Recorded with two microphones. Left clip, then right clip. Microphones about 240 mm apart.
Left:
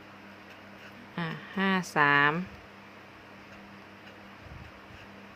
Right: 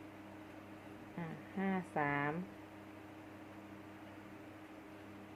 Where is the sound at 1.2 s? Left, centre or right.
Left.